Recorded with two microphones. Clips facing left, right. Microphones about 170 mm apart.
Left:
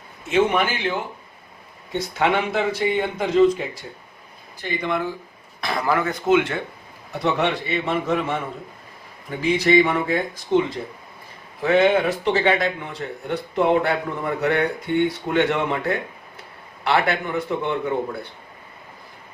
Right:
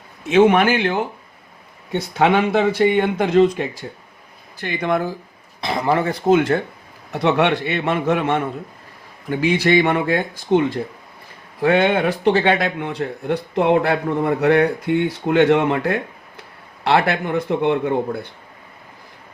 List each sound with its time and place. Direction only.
0.3 s speech: 70° right (ahead or behind)
4.6 s speech: 50° right (ahead or behind)
5.5 s speech: 25° right (ahead or behind); by 6.6 s 40° right (ahead or behind)
7.1 s a man's voice: 70° right (ahead or behind)
11.6 s speech: 60° right (ahead or behind)